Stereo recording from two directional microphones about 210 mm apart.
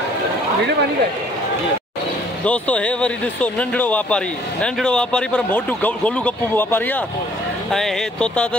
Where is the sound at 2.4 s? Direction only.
5° left (ahead or behind).